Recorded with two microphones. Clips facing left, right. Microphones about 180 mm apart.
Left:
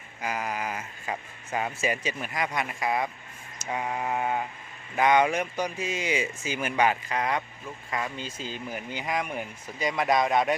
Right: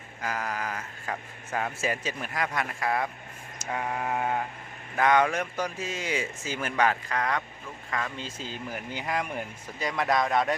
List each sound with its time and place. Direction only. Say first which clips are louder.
0.2 s speech: left 1 dB; 15° left (ahead or behind)
3.7 s sheep: left 1 dB; 10° left (ahead or behind)
4.9 s speech: left 1 dB; 15° left (ahead or behind)